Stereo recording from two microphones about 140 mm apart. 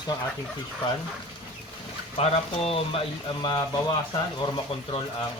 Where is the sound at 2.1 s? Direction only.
45° left (ahead or behind).